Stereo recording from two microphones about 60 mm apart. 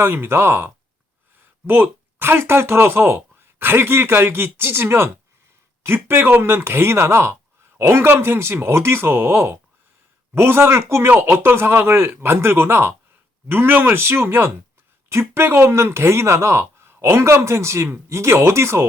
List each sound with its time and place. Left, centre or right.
0.0 s speech: right